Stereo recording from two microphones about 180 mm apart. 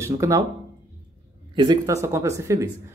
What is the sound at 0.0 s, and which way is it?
Speech, 15° right (ahead or behind).